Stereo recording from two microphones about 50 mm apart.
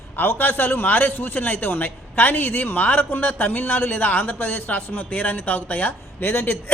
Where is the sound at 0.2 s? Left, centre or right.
Left.